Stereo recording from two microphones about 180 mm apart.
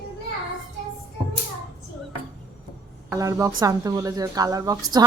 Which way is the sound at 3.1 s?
20° right (ahead or behind).